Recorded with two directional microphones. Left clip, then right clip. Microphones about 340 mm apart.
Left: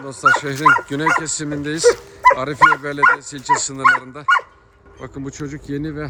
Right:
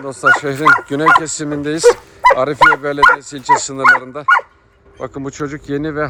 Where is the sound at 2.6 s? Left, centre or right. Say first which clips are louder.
Right 3 dB; centre.